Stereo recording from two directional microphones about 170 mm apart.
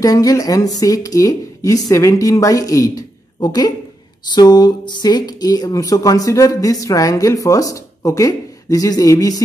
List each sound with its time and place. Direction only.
0.0 s speech: 20° left (ahead or behind)